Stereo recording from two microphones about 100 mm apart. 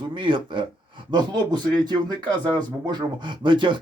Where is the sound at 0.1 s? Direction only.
55° right (ahead or behind).